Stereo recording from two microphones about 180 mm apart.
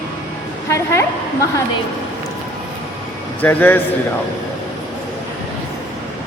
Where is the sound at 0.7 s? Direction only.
15° left (ahead or behind).